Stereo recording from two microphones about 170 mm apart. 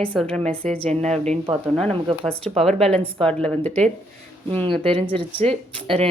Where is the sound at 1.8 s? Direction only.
35° right (ahead or behind).